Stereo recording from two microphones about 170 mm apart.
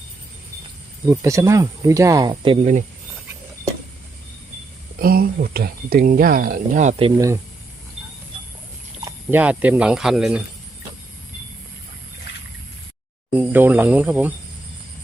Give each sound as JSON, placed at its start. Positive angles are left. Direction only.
{"t": 1.0, "sound": "speech", "side_deg": -20}
{"t": 4.9, "sound": "speech", "side_deg": -60}
{"t": 9.0, "sound": "a sound", "side_deg": -20}
{"t": 9.4, "sound": "speech", "side_deg": -10}
{"t": 13.3, "sound": "speech", "side_deg": -10}